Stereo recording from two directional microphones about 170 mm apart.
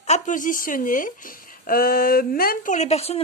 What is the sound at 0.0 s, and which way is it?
Speech, 45° left (ahead or behind).